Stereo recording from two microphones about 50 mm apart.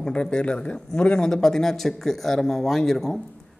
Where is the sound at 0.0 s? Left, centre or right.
Centre.